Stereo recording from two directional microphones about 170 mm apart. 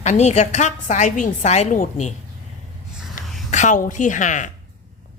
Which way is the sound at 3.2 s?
Centre (ahead or behind).